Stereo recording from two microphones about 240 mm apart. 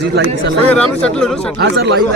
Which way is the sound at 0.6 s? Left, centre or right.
Centre.